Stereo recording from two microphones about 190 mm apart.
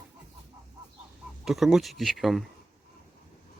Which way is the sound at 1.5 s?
Centre (ahead or behind).